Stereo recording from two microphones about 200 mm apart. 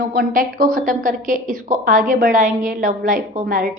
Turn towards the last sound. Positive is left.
turn(degrees=-45)  # may be behind; listen again after turning